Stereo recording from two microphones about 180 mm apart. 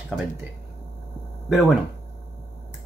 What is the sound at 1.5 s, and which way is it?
Speech, centre (ahead or behind).